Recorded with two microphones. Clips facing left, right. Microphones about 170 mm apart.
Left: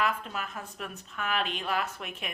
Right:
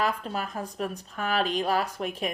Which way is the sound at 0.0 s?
35° right (ahead or behind).